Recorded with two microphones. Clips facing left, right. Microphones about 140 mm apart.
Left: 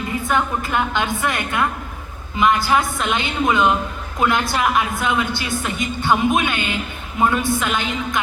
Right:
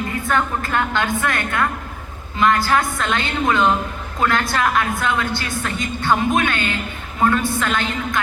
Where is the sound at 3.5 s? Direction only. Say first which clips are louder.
Even; centre (ahead or behind).